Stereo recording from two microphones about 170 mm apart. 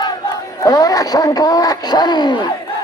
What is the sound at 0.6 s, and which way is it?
Radio, 20° left (ahead or behind).